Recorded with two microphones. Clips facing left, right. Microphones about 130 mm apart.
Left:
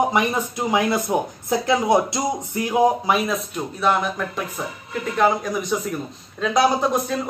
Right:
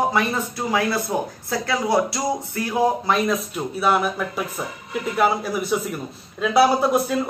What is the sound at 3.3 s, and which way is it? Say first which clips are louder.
A man's voice: right 2 dB; 5° right (ahead or behind).